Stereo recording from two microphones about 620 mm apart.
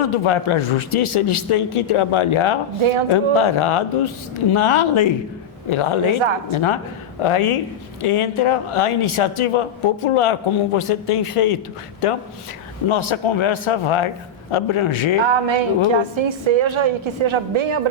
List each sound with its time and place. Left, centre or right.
0.0 s a man's voice: left
15.2 s a woman's voice: right